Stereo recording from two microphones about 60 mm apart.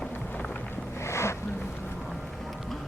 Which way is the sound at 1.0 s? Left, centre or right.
Left.